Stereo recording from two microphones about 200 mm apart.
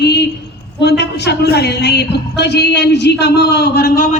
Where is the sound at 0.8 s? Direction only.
60° left (ahead or behind).